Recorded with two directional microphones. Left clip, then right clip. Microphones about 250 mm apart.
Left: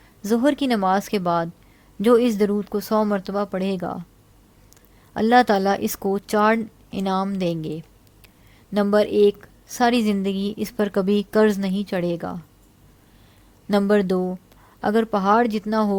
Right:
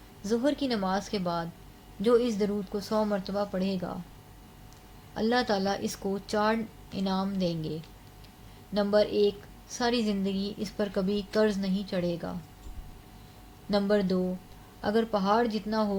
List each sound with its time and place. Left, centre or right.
0.2 s a woman's voice: left
5.1 s a woman's voice: left
13.7 s a woman's voice: left